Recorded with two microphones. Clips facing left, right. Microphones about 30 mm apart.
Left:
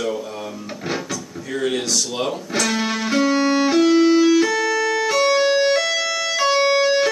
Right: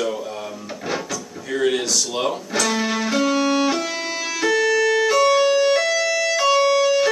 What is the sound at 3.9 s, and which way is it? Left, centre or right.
Music, left.